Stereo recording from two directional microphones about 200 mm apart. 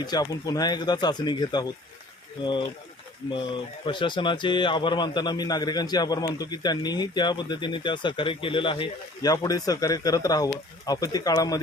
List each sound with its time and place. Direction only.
0.0 s a man's voice: 20° left (ahead or behind)
3.5 s a man's voice: 25° left (ahead or behind)